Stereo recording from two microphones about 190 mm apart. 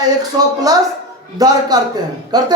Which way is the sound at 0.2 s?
20° right (ahead or behind).